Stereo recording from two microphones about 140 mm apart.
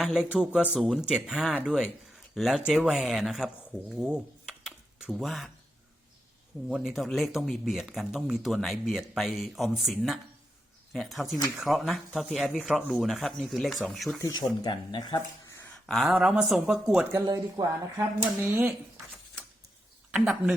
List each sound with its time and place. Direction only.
0.0 s speech: 5° right (ahead or behind)
6.7 s speech: 5° right (ahead or behind)
14.3 s speech: 30° left (ahead or behind)
15.9 s speech: centre (ahead or behind)
17.1 s speech: 20° right (ahead or behind)
20.1 s speech: 10° right (ahead or behind)